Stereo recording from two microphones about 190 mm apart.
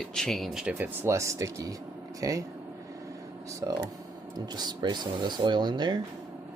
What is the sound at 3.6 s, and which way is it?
Speech, 15° right (ahead or behind).